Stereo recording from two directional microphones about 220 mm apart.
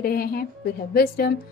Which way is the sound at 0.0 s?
40° left (ahead or behind).